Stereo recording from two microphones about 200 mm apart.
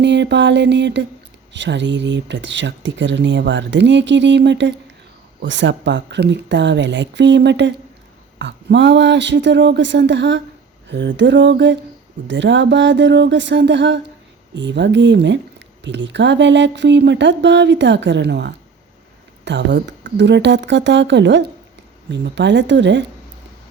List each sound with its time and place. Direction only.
0.0 s speech: 60° right (ahead or behind)